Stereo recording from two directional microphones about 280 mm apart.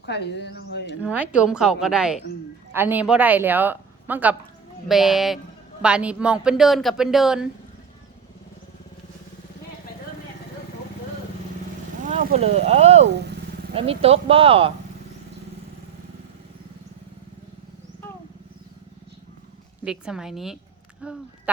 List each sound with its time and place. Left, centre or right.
0.0 s speech: left
1.0 s speech: centre
12.0 s speech: right
19.8 s speech: centre